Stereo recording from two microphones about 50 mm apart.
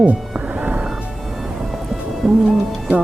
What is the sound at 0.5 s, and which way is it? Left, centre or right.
Music, right.